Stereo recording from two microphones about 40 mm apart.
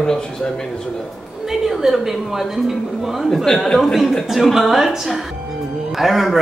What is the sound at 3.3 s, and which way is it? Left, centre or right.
Speech, centre.